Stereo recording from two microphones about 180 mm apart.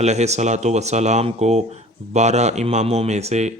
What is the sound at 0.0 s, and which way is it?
Speech, 40° right (ahead or behind).